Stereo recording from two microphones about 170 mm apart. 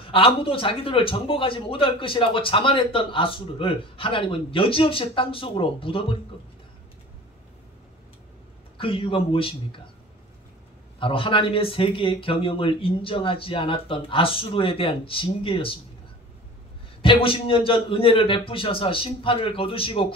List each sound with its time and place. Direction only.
0.0 s a man's voice: 30° left (ahead or behind)
8.7 s a man's voice: 30° left (ahead or behind)
11.0 s a man's voice: 30° left (ahead or behind)
17.0 s a man's voice: 30° left (ahead or behind)